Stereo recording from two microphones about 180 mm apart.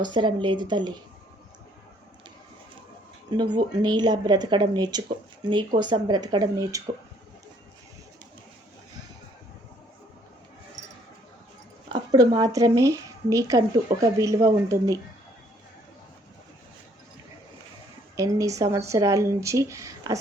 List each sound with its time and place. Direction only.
0.0 s a woman's voice: 25° right (ahead or behind)
3.3 s a woman's voice: 25° right (ahead or behind)
11.9 s a woman's voice: 25° right (ahead or behind)
18.2 s speech: 20° right (ahead or behind)